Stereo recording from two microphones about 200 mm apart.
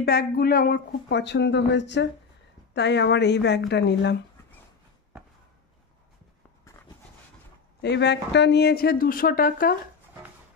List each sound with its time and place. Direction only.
0.0 s a woman's voice: 50° left (ahead or behind)
7.8 s speech: 60° left (ahead or behind)